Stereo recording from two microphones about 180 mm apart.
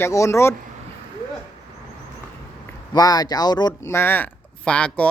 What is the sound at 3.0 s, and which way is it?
Speech, 20° left (ahead or behind).